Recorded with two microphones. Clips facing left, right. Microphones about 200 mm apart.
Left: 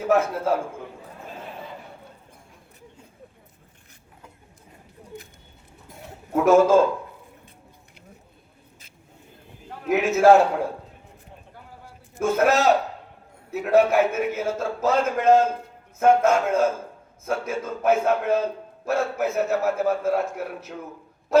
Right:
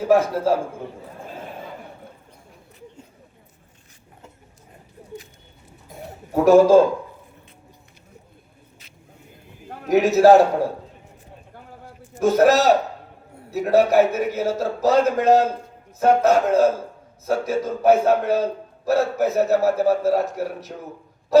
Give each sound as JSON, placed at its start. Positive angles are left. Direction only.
{"t": 0.1, "sound": "a man's voice", "side_deg": -35}
{"t": 6.3, "sound": "a man's voice", "side_deg": -35}
{"t": 9.6, "sound": "a man's voice", "side_deg": -40}
{"t": 12.2, "sound": "a man's voice", "side_deg": -35}